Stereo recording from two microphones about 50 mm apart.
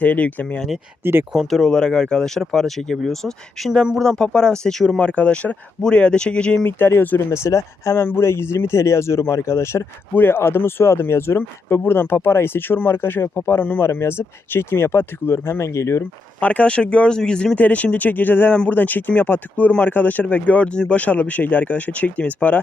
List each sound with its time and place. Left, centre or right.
0.0 s speech: left
1.0 s speech: right
1.5 s speech: centre
4.9 s speech: left
6.7 s speech: left
7.3 s speech: left
7.9 s speech: left
10.2 s speech: left
13.6 s speech: left
14.0 s speech: left
16.4 s speech: left
17.6 s speech: left